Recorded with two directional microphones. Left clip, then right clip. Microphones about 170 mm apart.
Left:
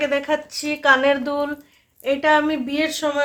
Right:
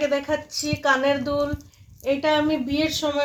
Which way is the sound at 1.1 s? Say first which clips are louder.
Left 2 dB; 15° left (ahead or behind).